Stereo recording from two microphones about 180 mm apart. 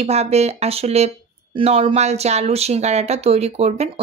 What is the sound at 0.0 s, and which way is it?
Speech, 35° right (ahead or behind).